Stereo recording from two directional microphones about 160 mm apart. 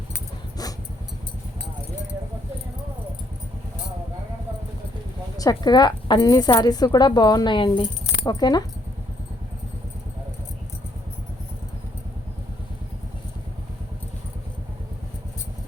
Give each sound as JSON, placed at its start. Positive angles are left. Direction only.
{"t": 5.4, "sound": "speech", "side_deg": 25}